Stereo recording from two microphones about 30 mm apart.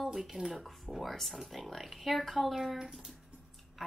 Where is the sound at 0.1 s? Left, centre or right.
Centre.